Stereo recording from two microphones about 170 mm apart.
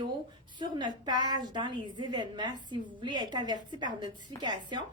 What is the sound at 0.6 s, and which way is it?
A woman's voice, 25° right (ahead or behind).